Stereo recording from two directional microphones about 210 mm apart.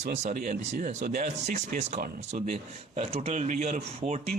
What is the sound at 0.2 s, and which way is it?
Speech, 35° right (ahead or behind).